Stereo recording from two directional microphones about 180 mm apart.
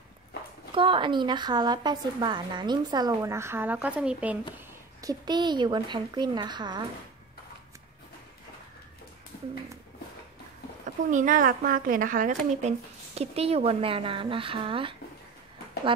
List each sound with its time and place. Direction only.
0.7 s a woman's voice: 30° right (ahead or behind); by 4.4 s 5° right (ahead or behind)
5.0 s a woman's voice: 25° right (ahead or behind)
11.1 s speech: 45° right (ahead or behind); by 15.0 s 30° right (ahead or behind)